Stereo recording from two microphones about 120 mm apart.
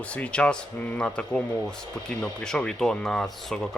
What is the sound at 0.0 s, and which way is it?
Speech, 10° left (ahead or behind).